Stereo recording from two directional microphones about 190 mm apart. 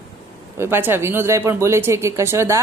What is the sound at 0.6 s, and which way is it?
A woman's voice, 10° right (ahead or behind).